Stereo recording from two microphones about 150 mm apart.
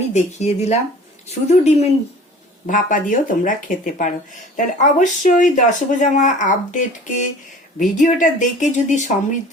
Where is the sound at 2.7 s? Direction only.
60° left (ahead or behind).